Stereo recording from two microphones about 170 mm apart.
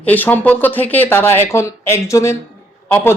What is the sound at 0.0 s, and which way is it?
Speech, 10° left (ahead or behind).